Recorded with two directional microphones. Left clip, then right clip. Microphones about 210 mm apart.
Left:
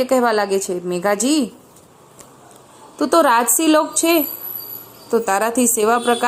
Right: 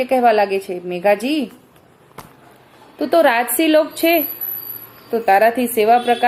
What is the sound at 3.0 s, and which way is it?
A woman's voice, 25° left (ahead or behind).